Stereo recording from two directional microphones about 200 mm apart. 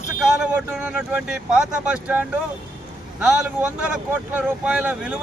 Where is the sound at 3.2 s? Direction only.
5° right (ahead or behind).